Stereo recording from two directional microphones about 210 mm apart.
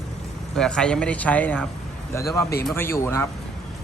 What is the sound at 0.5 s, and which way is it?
A man's voice, 5° left (ahead or behind).